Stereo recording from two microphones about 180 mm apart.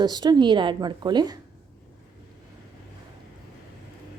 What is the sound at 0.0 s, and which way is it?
A woman's voice, 25° right (ahead or behind).